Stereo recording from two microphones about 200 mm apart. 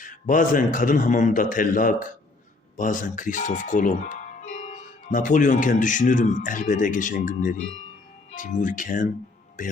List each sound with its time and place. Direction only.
0.0 s a man's voice: 40° left (ahead or behind)